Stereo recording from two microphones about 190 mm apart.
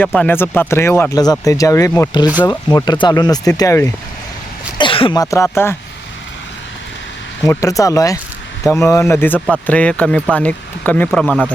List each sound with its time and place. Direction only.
0.0 s speech: 10° left (ahead or behind)
7.4 s speech: 15° left (ahead or behind); by 11.5 s centre (ahead or behind)